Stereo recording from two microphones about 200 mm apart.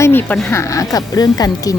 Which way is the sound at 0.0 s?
10° left (ahead or behind).